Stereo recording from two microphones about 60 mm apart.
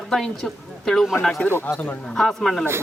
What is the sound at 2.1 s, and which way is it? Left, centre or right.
Speech, centre.